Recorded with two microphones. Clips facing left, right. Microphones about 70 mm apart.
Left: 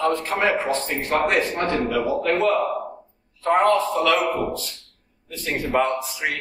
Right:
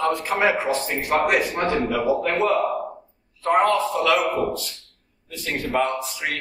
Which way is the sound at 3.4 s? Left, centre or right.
Centre.